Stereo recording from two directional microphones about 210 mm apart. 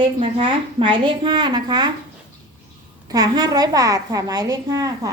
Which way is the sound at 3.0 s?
15° right (ahead or behind).